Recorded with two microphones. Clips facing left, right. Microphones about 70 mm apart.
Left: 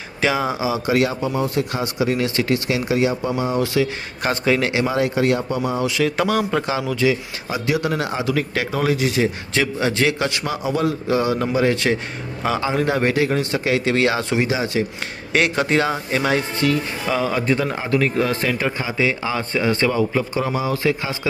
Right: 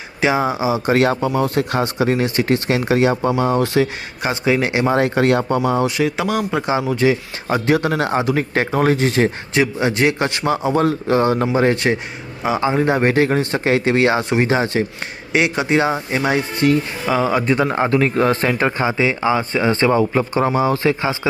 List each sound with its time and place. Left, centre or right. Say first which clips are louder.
0.2 s speech: right 3 dB; right
1.1 s speech: right 3 dB; right
2.6 s speech: right 3 dB; right
4.2 s a man's voice: right 1 dB; centre
4.9 s speech: right 5 dB; right
6.0 s a man's voice: even; centre
6.7 s speech: right 3 dB; right
7.4 s speech: right 5 dB; right
9.6 s speech: right 3 dB; right
10.5 s speech: right 7 dB; right
14.4 s speech: right 3 dB; right
15.3 s a man's voice: right 1 dB; centre
17.4 s speech: right 4 dB; right
18.9 s speech: right 4 dB; right